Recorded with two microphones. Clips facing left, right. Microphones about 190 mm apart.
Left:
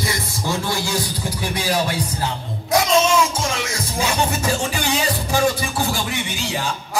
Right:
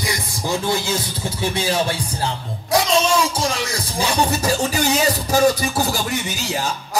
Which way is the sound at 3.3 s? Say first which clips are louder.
Right 2 dB; 35° right (ahead or behind).